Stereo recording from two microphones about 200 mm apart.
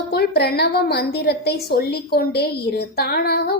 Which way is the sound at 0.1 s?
50° left (ahead or behind).